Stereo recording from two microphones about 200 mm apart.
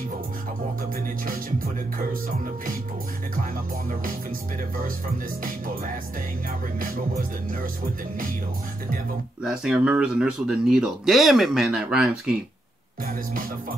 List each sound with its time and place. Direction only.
1.0 s music: 45° right (ahead or behind)
6.8 s music: 45° right (ahead or behind)
9.4 s speech: 5° right (ahead or behind)
13.0 s music: 45° right (ahead or behind)